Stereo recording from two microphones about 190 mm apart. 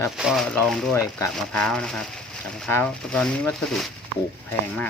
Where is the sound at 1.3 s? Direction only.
5° left (ahead or behind).